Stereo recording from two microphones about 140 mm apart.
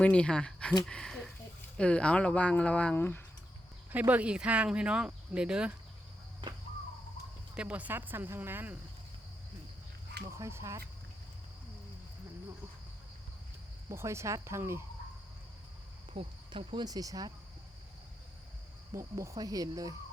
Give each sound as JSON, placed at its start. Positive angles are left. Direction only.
{"t": 0.0, "sound": "speech", "side_deg": 10}
{"t": 3.9, "sound": "speech", "side_deg": -10}
{"t": 7.5, "sound": "speech", "side_deg": -10}
{"t": 10.2, "sound": "speech", "side_deg": -20}
{"t": 13.9, "sound": "speech", "side_deg": -20}
{"t": 16.1, "sound": "speech", "side_deg": -35}
{"t": 18.9, "sound": "speech", "side_deg": -20}